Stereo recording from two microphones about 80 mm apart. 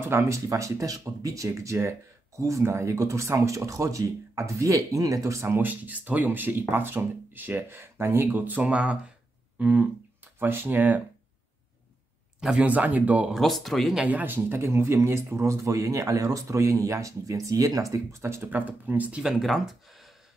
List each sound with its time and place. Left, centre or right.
0.0 s speech: right
5.5 s speech: right
9.6 s a sound: centre
10.4 s speech: right
12.4 s speech: centre
12.6 s speech: centre
13.3 s speech: centre
14.0 s speech: right
18.5 s speech: right
19.4 s speech: centre